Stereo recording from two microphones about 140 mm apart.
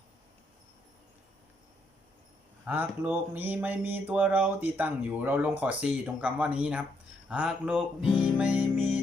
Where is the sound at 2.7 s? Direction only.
15° right (ahead or behind).